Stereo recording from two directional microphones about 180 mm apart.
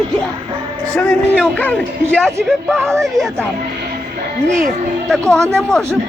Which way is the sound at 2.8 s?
15° right (ahead or behind).